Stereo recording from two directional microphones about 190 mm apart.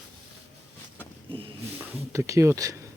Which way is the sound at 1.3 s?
30° right (ahead or behind).